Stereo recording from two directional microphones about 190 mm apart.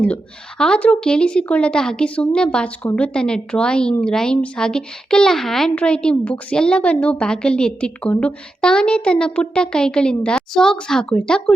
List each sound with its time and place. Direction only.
0.6 s a woman's voice: 5° left (ahead or behind)